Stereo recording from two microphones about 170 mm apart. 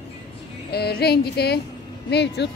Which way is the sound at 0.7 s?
70° left (ahead or behind).